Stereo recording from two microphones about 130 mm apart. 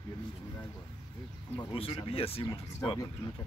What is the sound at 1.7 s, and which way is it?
Speech, 45° left (ahead or behind).